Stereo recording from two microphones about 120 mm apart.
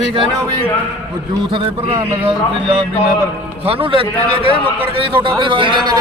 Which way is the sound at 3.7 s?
50° right (ahead or behind).